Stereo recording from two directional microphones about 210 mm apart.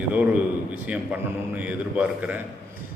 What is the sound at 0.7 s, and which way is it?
A man's voice, 5° right (ahead or behind).